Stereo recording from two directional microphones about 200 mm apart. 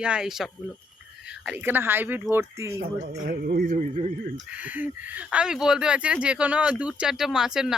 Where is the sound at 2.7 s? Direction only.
45° right (ahead or behind).